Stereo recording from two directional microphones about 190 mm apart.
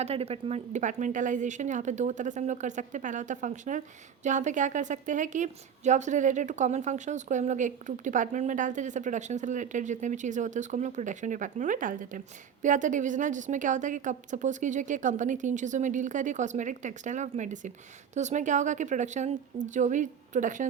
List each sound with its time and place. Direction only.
0.0 s speech: 30° right (ahead or behind)